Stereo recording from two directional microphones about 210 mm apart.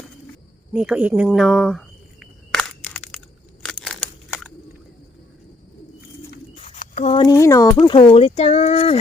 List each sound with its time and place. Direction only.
0.7 s cricket: 5° right (ahead or behind)
6.6 s a sound: 30° left (ahead or behind)
7.2 s speech: 15° left (ahead or behind)
7.8 s speech: 25° left (ahead or behind)